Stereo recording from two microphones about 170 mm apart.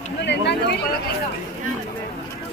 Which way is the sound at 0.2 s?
90° left.